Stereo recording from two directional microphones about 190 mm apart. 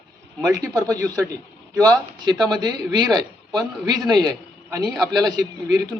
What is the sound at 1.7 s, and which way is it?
A man's voice, 20° right (ahead or behind).